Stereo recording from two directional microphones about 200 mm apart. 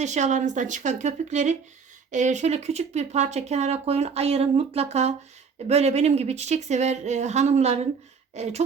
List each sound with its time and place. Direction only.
0.0 s speech: 35° right (ahead or behind)